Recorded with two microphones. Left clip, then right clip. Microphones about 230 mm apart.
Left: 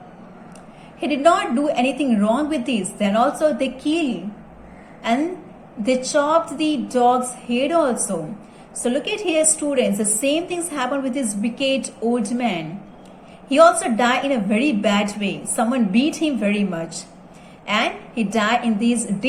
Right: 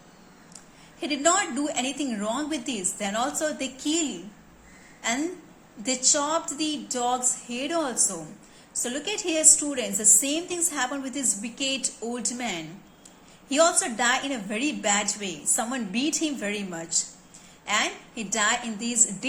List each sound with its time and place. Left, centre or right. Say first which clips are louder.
0.9 s a woman's voice: left 7 dB; right
5.8 s a woman's voice: left 7 dB; right